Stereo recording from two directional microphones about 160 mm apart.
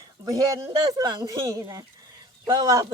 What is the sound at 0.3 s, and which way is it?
Speech, 20° right (ahead or behind).